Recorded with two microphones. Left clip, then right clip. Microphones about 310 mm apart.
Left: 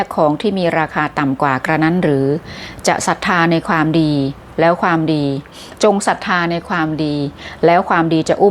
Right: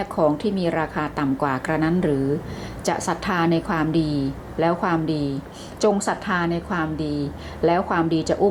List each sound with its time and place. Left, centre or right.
0.0 s a woman's voice: left